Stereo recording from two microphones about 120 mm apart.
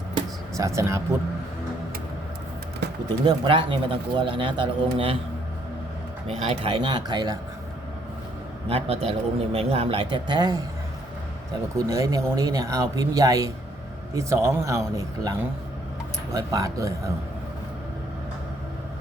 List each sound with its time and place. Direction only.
0.8 s speech: 25° right (ahead or behind)
3.2 s a man's voice: 45° right (ahead or behind)
6.2 s a man's voice: 60° right (ahead or behind); by 7.3 s 35° right (ahead or behind)
8.7 s a man's voice: 55° right (ahead or behind); by 10.6 s 35° right (ahead or behind)
11.9 s speech: 30° right (ahead or behind)